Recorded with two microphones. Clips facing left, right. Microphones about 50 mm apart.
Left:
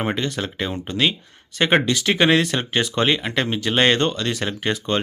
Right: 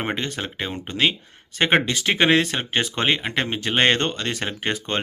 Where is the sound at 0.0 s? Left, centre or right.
Right.